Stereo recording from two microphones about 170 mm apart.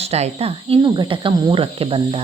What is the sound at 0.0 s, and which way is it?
Speech, 40° right (ahead or behind).